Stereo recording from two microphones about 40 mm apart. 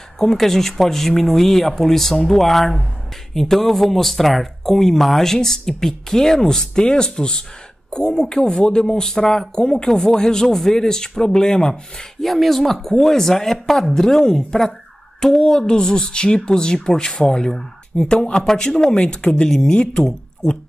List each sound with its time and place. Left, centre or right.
0.2 s speech: centre
12.3 s speech: centre
17.9 s speech: left